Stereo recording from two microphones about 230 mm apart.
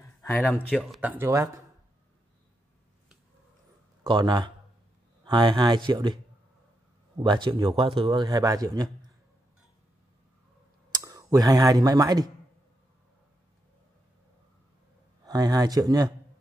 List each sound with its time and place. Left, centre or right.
0.4 s speech: centre
4.0 s a man's voice: centre
7.2 s a man's voice: centre
10.9 s speech: centre
15.2 s speech: centre